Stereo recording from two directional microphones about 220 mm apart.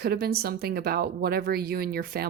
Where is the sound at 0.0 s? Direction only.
45° right (ahead or behind).